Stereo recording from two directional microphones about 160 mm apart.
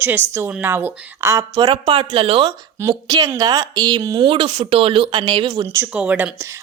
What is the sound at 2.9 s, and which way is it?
Speech, 25° right (ahead or behind).